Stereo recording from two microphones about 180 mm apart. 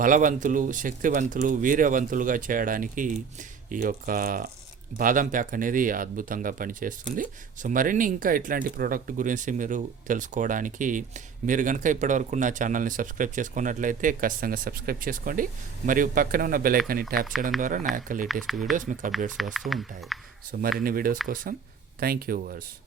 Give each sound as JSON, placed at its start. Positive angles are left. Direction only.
{"t": 0.0, "sound": "speech", "side_deg": -50}
{"t": 18.4, "sound": "speech", "side_deg": 0}
{"t": 18.7, "sound": "speech", "side_deg": -45}
{"t": 19.5, "sound": "speech", "side_deg": 0}
{"t": 20.5, "sound": "speech", "side_deg": -55}